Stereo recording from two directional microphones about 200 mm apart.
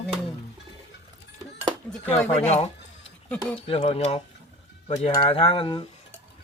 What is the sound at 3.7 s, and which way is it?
Speech, 30° left (ahead or behind).